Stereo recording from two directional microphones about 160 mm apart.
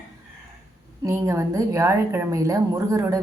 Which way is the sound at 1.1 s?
20° right (ahead or behind).